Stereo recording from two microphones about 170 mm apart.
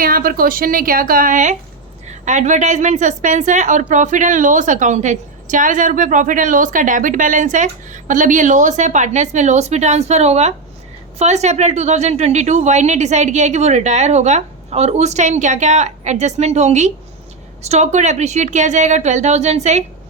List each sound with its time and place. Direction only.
0.0 s a woman's voice: 60° right (ahead or behind); by 19.8 s 40° right (ahead or behind)